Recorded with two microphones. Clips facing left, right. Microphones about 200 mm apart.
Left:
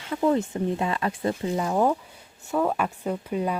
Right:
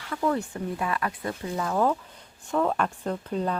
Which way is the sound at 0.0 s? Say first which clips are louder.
Left 4 dB; 20° left (ahead or behind).